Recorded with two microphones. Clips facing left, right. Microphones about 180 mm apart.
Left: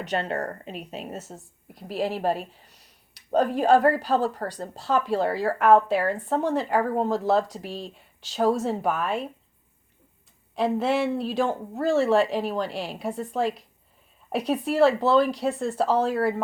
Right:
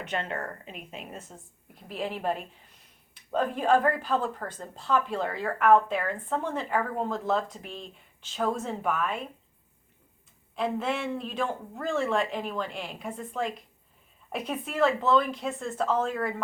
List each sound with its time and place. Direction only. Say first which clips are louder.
0.0 s speech: left 5 dB; 35° left (ahead or behind)
10.5 s speech: left 6 dB; 35° left (ahead or behind)